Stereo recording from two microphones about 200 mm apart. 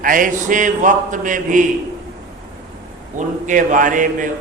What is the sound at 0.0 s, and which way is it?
A man's voice, 40° right (ahead or behind).